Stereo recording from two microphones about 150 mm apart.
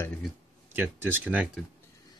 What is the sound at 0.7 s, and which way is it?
Speech, 15° right (ahead or behind).